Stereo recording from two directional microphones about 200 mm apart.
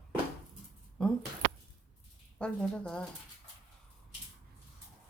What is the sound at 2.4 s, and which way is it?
Speech, 5° left (ahead or behind).